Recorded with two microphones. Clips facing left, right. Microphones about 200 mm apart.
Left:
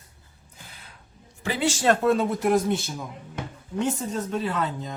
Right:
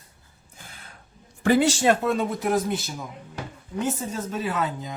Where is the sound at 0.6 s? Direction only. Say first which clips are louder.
Right 1 dB; 50° right (ahead or behind).